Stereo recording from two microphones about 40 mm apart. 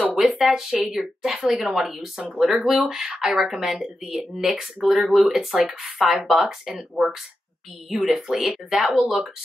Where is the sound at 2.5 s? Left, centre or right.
Centre.